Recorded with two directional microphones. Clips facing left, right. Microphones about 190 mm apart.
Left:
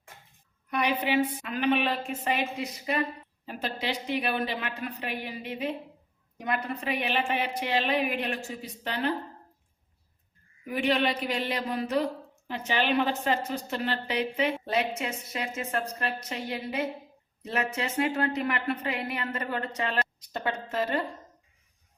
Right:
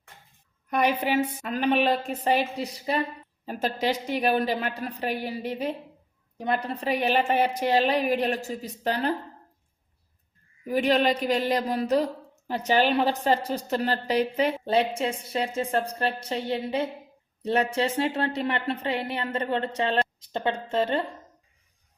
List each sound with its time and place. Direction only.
0.7 s a woman's voice: 45° right (ahead or behind)
6.3 s a woman's voice: 30° right (ahead or behind)
10.7 s a woman's voice: 40° right (ahead or behind)